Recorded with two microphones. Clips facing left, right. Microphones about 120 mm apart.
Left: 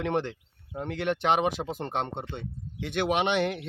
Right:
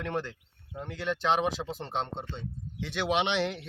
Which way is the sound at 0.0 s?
70° left (ahead or behind).